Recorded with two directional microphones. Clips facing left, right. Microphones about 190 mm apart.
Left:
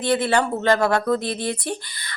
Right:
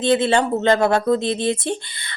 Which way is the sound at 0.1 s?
25° right (ahead or behind).